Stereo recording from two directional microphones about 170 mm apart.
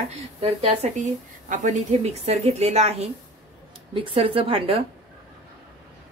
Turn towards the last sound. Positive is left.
turn(degrees=-35)  # may be behind; listen again after turning